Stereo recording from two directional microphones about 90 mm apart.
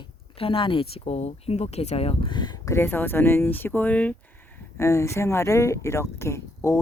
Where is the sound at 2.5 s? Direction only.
35° left (ahead or behind).